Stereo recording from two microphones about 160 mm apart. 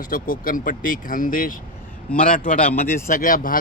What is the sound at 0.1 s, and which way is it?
Speech, 60° left (ahead or behind).